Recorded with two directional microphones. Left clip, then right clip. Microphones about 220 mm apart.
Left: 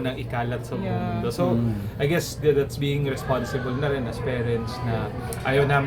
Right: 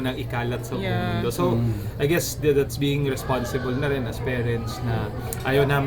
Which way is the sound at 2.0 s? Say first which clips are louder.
Right 2 dB; 15° right (ahead or behind).